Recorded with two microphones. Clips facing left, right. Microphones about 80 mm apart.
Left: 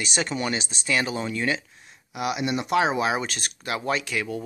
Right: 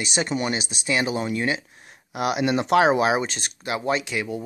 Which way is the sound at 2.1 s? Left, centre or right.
Right.